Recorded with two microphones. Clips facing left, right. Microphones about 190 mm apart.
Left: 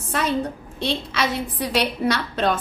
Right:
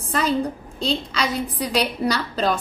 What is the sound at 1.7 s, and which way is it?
Speech, centre (ahead or behind).